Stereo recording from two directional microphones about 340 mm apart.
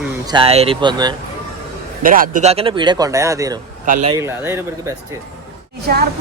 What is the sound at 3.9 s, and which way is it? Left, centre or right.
Speech, right.